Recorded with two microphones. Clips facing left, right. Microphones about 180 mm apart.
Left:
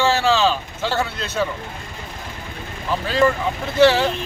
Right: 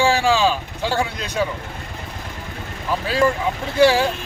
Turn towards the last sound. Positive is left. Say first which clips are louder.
# left 1 dB
turn(degrees=-10)  # may be behind; listen again after turning